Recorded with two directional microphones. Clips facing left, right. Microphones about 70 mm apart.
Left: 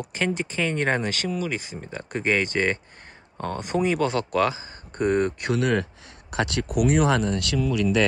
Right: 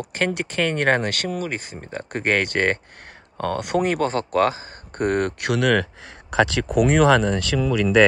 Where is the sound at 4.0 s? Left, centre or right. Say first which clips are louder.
Right 2 dB; right.